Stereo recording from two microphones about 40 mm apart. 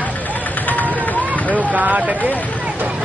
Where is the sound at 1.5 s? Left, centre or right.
Right.